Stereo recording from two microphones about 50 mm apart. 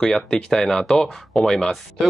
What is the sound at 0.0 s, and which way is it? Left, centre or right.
Speech, centre.